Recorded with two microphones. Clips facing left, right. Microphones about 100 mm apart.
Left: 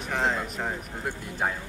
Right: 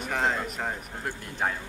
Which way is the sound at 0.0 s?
Centre (ahead or behind).